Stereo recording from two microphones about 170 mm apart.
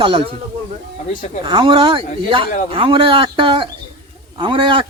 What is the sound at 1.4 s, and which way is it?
A man's voice, 30° right (ahead or behind).